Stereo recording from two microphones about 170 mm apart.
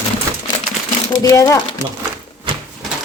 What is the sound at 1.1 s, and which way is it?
Speech, 20° left (ahead or behind).